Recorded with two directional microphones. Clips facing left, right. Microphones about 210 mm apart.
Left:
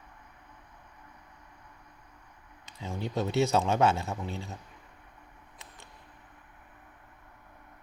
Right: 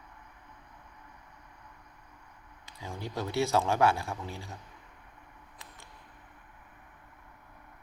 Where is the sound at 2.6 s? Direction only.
20° left (ahead or behind).